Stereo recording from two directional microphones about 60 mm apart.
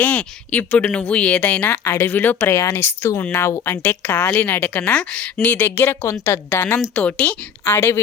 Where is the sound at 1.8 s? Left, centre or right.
Left.